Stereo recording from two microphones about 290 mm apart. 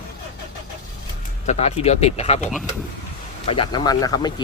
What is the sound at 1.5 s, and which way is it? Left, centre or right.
Speech, left.